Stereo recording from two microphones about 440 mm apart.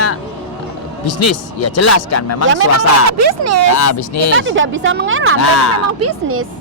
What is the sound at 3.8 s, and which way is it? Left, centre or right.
Speech, left.